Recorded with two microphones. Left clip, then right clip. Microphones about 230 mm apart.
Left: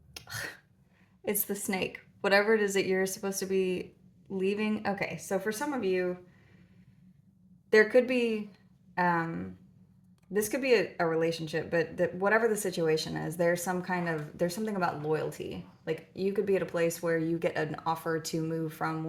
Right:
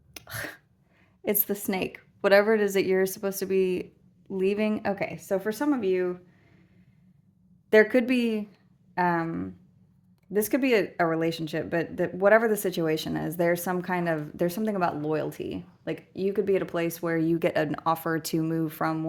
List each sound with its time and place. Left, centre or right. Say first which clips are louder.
0.1 s a sound: right 2 dB; right
1.2 s speech: right 5 dB; right
7.7 s speech: right 2 dB; right